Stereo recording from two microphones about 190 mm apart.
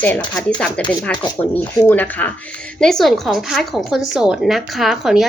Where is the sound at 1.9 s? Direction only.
10° left (ahead or behind).